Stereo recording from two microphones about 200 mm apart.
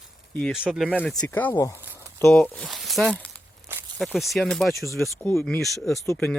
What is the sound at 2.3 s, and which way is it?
Speech, 5° left (ahead or behind).